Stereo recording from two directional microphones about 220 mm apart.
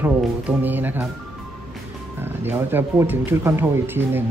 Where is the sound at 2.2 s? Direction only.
10° right (ahead or behind).